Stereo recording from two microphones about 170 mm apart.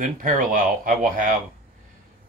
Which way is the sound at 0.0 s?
50° right (ahead or behind).